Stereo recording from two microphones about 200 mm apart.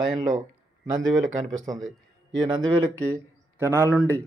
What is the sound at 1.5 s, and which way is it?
Speech, 20° right (ahead or behind).